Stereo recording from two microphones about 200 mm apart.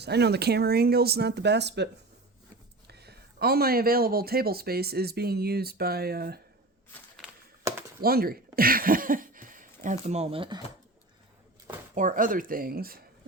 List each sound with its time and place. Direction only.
0.0 s speech: 55° right (ahead or behind)
6.9 s a sound: 10° left (ahead or behind)
8.0 s speech: 50° right (ahead or behind); by 10.6 s 25° right (ahead or behind)
11.9 s speech: 40° right (ahead or behind)